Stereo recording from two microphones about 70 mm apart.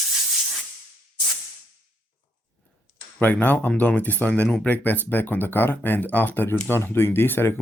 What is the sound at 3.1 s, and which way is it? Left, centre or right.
Speech, left.